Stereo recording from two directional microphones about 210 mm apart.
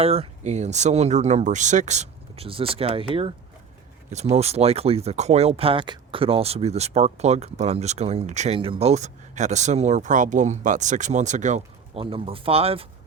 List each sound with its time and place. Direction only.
0.0 s speech: 30° right (ahead or behind)